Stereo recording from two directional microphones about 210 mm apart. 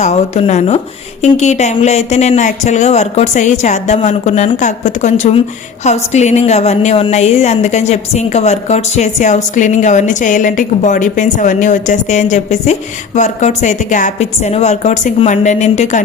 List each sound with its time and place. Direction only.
0.0 s a woman's voice: 30° left (ahead or behind)